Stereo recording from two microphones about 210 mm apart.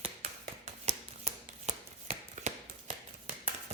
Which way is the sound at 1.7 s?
35° right (ahead or behind).